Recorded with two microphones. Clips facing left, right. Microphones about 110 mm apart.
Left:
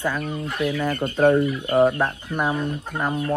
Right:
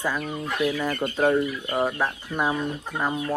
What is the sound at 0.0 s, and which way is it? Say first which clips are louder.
Speech: left 2 dB; 5° right (ahead or behind).